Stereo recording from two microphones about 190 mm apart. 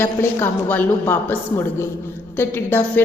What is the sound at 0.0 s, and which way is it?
A woman's voice, 10° left (ahead or behind).